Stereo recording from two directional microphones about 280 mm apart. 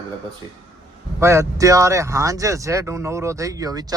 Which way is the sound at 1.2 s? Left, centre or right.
Centre.